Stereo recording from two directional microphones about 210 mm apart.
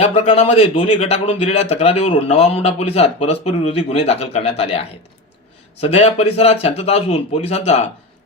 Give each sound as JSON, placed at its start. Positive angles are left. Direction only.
{"t": 0.0, "sound": "a man's voice", "side_deg": 30}
{"t": 5.8, "sound": "a man's voice", "side_deg": 30}